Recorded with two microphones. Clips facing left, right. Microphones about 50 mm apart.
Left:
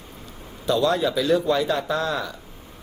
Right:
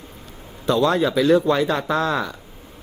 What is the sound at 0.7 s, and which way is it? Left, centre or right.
Speech, right.